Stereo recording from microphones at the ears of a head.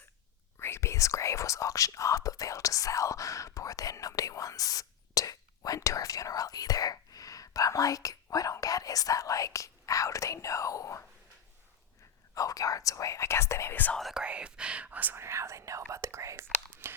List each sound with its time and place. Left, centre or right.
0.6 s speech: left
12.3 s speech: left
15.0 s speech: right